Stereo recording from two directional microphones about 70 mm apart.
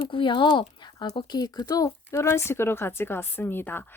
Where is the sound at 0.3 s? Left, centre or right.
Left.